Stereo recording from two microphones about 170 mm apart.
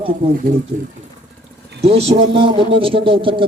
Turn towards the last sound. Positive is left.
turn(degrees=-30)  # may be behind; listen again after turning